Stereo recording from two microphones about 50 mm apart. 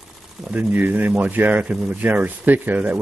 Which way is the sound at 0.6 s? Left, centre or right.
Right.